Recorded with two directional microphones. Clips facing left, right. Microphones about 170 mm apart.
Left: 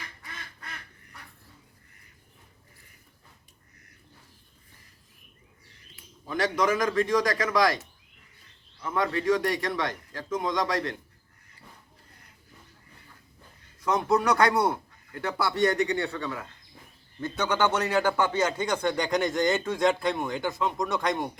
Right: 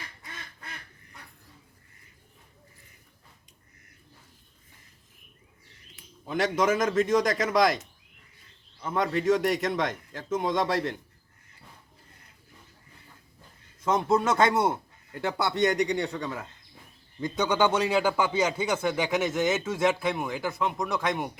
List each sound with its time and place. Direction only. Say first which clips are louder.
6.2 s a man's voice: right 1 dB; 25° right (ahead or behind)
8.8 s a man's voice: right 1 dB; 20° right (ahead or behind)
13.7 s a man's voice: even; 20° right (ahead or behind); by 21.2 s centre (ahead or behind)